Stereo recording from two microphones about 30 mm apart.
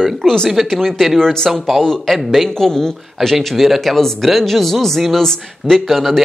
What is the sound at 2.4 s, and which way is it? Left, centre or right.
Speech, centre.